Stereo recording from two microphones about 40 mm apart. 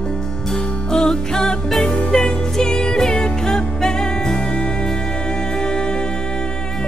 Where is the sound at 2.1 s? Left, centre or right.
Centre.